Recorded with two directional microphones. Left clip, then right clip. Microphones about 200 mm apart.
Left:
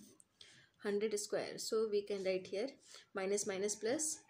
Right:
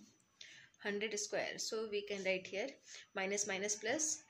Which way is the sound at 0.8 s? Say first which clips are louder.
Left 2 dB; 55° left (ahead or behind).